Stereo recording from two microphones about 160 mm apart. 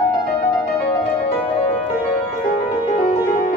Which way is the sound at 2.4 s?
50° left (ahead or behind).